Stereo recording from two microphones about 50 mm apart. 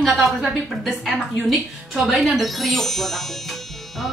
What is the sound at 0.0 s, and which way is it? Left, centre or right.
A woman's voice, centre.